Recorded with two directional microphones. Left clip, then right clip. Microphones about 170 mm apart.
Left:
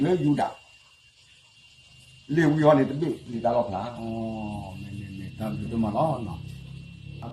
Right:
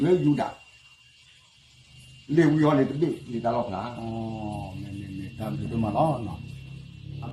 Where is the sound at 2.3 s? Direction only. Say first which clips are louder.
Left 2 dB; 20° left (ahead or behind).